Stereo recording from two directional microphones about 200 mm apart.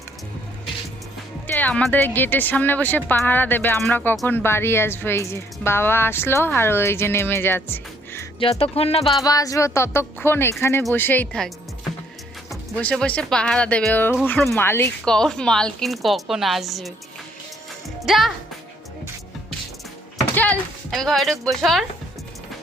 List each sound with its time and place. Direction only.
1.5 s speech: 10° left (ahead or behind)
8.4 s music: 30° left (ahead or behind)
9.2 s speech: 15° left (ahead or behind); by 16.9 s centre (ahead or behind)
18.0 s speech: centre (ahead or behind)
20.1 s speech: 10° left (ahead or behind)